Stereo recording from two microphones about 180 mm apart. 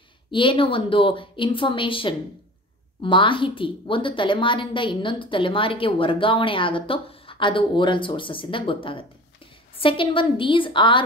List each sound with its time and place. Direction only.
0.3 s a woman's voice: 30° left (ahead or behind)